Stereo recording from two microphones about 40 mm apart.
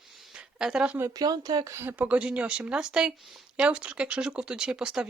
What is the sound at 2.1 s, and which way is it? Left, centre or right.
Speech, right.